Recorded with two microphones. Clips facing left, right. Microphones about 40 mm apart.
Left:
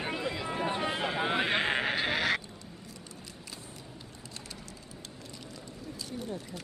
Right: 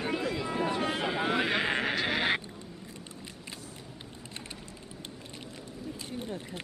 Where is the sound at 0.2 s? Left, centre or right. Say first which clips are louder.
Right 2 dB; centre.